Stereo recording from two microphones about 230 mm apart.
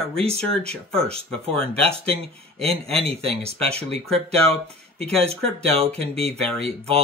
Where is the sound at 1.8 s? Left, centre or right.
Right.